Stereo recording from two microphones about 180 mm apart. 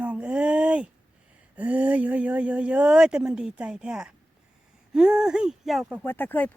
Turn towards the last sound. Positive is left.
turn(degrees=10)  # may be behind; listen again after turning